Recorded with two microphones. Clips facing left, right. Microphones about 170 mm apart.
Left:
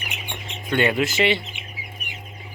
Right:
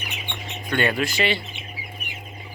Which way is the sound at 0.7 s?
20° left (ahead or behind).